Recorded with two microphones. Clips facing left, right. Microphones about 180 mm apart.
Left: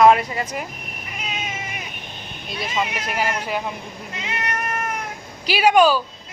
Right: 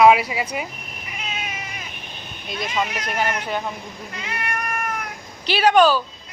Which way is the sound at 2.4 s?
5° left (ahead or behind).